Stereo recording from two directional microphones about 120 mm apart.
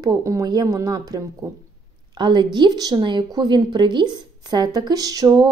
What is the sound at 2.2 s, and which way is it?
A woman's voice, 40° right (ahead or behind).